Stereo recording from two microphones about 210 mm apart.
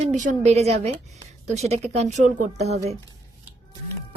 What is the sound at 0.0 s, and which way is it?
Speech, 35° right (ahead or behind).